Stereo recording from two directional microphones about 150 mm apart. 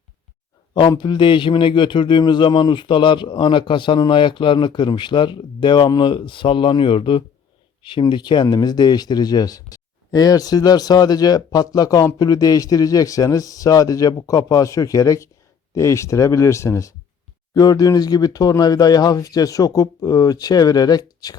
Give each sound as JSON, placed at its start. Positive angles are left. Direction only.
{"t": 0.7, "sound": "a man's voice", "side_deg": 30}